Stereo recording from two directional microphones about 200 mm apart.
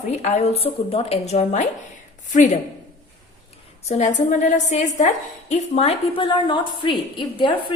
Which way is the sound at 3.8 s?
35° left (ahead or behind).